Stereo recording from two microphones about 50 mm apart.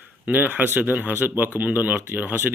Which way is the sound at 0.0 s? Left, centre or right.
Right.